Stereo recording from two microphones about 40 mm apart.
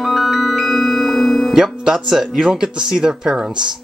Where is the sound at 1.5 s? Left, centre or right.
Centre.